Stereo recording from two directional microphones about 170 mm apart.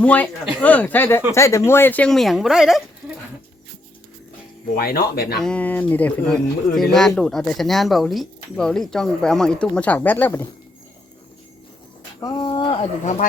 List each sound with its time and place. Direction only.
0.0 s speech: 10° left (ahead or behind)
4.8 s speech: 65° left (ahead or behind)
5.4 s speech: 5° left (ahead or behind)
12.2 s speech: 25° left (ahead or behind)